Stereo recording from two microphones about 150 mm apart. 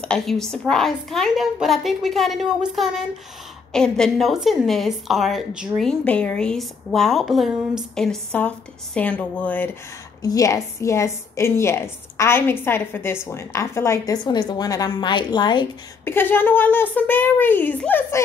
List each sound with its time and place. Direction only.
0.0 s a woman's voice: 5° left (ahead or behind)
10.2 s a woman's voice: 20° left (ahead or behind)
16.1 s a woman's voice: 15° left (ahead or behind)